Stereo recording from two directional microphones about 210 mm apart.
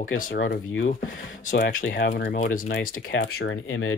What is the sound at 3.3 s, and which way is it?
Speech, 70° left (ahead or behind).